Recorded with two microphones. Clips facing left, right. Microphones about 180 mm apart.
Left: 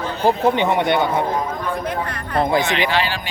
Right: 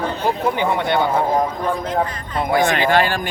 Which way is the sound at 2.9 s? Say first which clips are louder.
Right 4 dB; 50° right (ahead or behind).